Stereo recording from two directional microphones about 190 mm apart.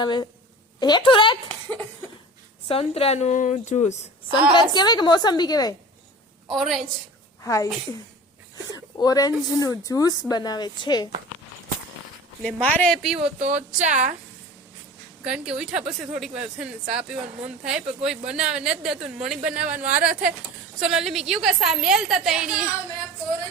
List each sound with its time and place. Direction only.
0.0 s speech: 25° left (ahead or behind)
2.6 s a woman's voice: 30° left (ahead or behind)
4.3 s speech: 20° left (ahead or behind)
6.5 s speech: centre (ahead or behind)
7.4 s a woman's voice: 15° left (ahead or behind)
8.7 s speech: 20° left (ahead or behind)
12.4 s speech: 5° left (ahead or behind)
13.4 s speech: 40° right (ahead or behind)
15.2 s speech: 5° right (ahead or behind)